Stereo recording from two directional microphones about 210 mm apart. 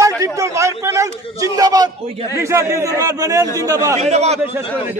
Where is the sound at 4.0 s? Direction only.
30° right (ahead or behind).